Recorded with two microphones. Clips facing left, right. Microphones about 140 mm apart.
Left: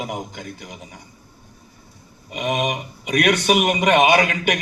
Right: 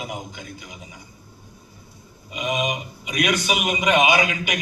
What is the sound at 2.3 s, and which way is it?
A man's voice, 60° left (ahead or behind).